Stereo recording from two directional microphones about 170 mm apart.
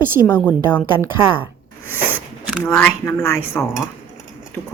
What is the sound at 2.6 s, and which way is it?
Speech, 15° left (ahead or behind).